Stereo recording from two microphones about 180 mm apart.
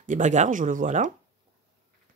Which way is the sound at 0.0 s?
45° right (ahead or behind).